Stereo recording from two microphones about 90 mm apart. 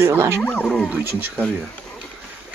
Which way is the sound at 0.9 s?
20° right (ahead or behind).